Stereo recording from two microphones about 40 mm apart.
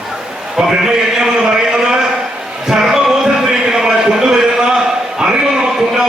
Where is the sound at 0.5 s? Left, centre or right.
Centre.